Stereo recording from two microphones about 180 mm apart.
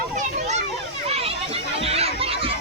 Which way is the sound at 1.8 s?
35° right (ahead or behind).